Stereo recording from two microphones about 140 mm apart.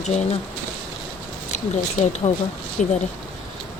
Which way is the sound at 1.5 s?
55° left (ahead or behind).